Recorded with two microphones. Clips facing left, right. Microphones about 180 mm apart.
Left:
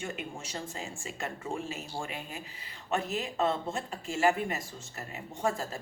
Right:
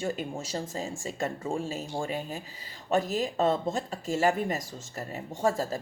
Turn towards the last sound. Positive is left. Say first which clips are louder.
# right 5 dB
turn(degrees=-35)  # may be behind; listen again after turning